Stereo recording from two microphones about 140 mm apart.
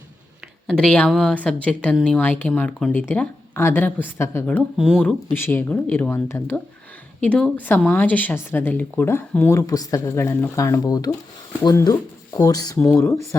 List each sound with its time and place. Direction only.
0.7 s speech: 5° left (ahead or behind)
4.4 s a woman's voice: 5° left (ahead or behind)